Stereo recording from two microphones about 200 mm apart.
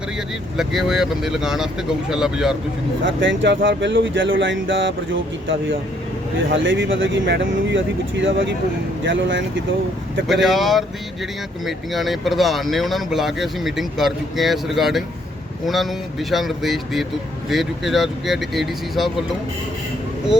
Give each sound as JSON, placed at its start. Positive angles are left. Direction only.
{"t": 0.5, "sound": "speech", "side_deg": 0}
{"t": 3.0, "sound": "speech", "side_deg": -65}
{"t": 10.2, "sound": "speech", "side_deg": 0}